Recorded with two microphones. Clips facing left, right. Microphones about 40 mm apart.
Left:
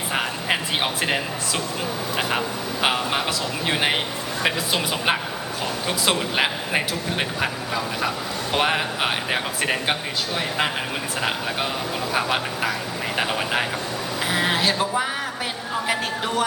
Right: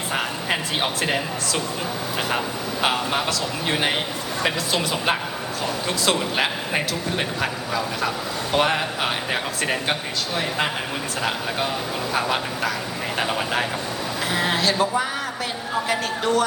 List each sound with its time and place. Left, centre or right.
0.1 s speech: centre
2.8 s a man's voice: centre
12.1 s a man's voice: centre